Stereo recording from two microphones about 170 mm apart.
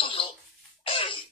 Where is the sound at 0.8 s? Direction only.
30° left (ahead or behind).